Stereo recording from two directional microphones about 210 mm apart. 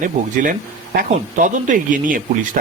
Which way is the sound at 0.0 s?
40° right (ahead or behind).